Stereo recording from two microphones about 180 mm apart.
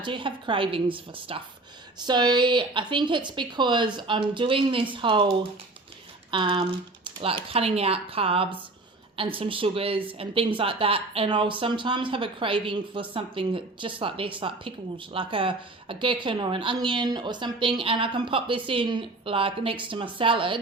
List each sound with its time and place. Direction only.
0.0 s speech: 30° right (ahead or behind)